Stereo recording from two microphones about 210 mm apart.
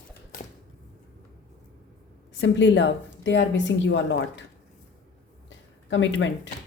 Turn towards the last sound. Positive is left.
turn(degrees=60)  # may be behind; listen again after turning